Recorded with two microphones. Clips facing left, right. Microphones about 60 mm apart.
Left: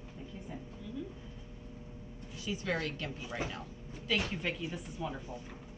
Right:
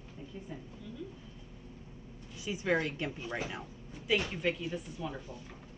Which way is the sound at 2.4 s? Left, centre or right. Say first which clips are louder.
Right 4 dB; right.